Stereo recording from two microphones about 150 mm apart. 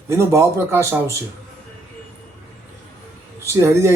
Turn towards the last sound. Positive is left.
turn(degrees=-20)  # may be behind; listen again after turning